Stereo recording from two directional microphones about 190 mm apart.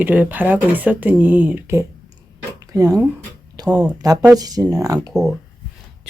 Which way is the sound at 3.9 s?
20° right (ahead or behind).